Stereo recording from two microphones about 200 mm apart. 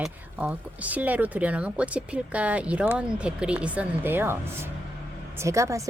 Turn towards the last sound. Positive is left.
turn(degrees=-15)  # may be behind; listen again after turning